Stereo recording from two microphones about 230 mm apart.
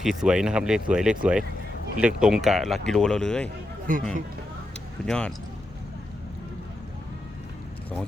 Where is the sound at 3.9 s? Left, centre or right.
Right.